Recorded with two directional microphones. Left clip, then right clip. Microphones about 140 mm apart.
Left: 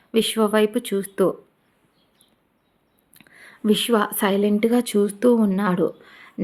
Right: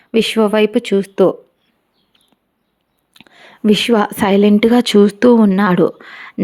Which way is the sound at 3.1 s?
50° right (ahead or behind).